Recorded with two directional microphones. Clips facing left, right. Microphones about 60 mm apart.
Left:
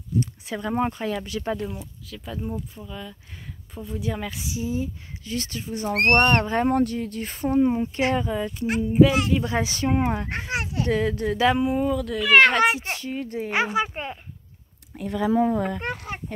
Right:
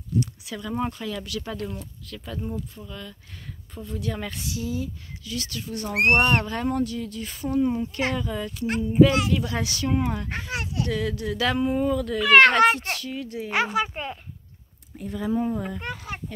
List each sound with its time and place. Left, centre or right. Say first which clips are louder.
0.5 s speech: left 4 dB; left
1.6 s speech: left 1 dB; centre
4.5 s speech: left 3 dB; left
6.1 s speech: left 3 dB; centre
6.4 s speech: left 5 dB; left
6.8 s speech: left 3 dB; left
8.9 s speech: even; centre
9.3 s speech: left 3 dB; left
11.4 s speech: left 2 dB; centre
12.8 s speech: left 1 dB; left
13.5 s speech: even; centre
15.0 s speech: left 5 dB; left
15.8 s speech: left 3 dB; left